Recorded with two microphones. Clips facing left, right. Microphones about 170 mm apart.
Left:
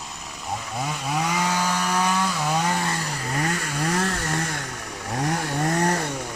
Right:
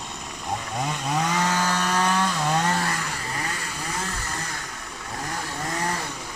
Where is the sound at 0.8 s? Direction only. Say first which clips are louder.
Even; 5° left (ahead or behind).